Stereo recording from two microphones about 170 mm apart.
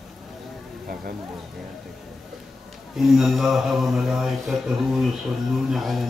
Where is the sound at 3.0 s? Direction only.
Centre (ahead or behind).